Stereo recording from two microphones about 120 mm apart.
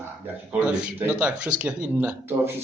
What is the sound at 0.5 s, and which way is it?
Speech, 10° right (ahead or behind).